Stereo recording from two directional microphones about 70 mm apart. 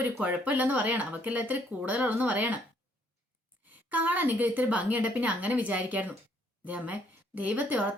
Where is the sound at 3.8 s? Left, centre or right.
Right.